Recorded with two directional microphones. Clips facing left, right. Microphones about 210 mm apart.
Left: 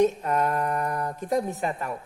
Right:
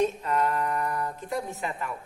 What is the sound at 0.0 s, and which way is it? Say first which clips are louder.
Speech: left 3 dB; 45° left (ahead or behind).